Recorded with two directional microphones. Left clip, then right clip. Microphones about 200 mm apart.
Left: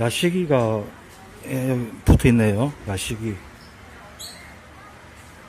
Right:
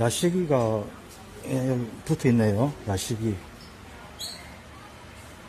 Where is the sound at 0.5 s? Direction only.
10° left (ahead or behind).